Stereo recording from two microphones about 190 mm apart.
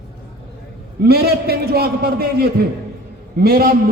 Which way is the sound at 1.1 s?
55° right (ahead or behind).